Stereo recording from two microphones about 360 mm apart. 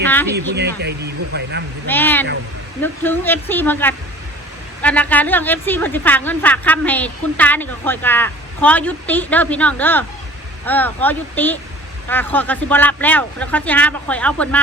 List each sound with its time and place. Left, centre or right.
0.3 s speech: right
1.9 s speech: centre